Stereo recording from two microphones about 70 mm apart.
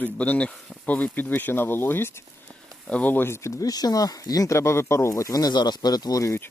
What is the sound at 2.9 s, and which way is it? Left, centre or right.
Speech, left.